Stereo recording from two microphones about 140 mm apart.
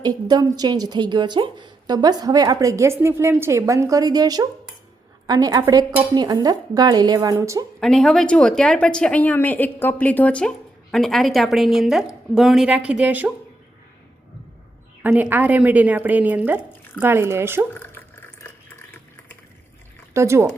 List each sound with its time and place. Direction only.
0.0 s a woman's voice: 30° right (ahead or behind)
7.8 s a woman's voice: 5° left (ahead or behind)
15.0 s a woman's voice: 10° right (ahead or behind)
17.7 s water: 15° left (ahead or behind)
20.1 s a woman's voice: 20° right (ahead or behind)